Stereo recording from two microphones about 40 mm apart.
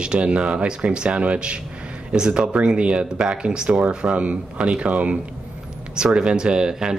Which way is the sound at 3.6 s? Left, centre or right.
Right.